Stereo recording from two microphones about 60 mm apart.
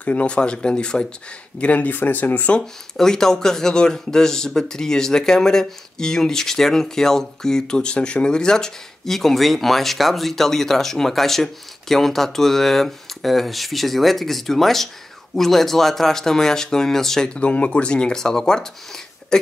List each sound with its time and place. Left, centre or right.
0.0 s speech: left
2.6 s speech: centre
17.3 s speech: left